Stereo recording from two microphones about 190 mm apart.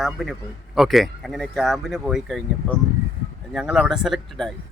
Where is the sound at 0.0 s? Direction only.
Centre (ahead or behind).